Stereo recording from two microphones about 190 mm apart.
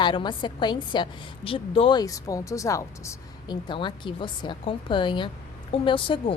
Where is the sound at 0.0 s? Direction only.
25° left (ahead or behind).